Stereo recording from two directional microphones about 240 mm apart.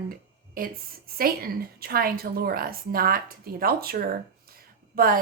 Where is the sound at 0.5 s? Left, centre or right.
Right.